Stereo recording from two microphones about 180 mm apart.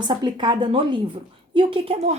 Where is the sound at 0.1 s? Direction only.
25° right (ahead or behind).